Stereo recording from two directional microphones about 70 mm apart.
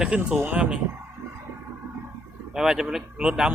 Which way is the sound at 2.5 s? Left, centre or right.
Centre.